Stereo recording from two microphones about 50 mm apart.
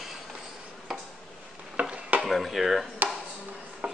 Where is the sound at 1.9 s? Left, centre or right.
Right.